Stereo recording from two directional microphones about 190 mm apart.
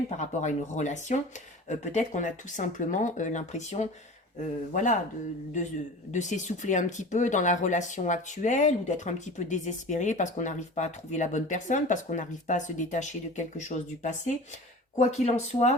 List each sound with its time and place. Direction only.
0.2 s speech: 40° left (ahead or behind)
6.1 s speech: 40° left (ahead or behind)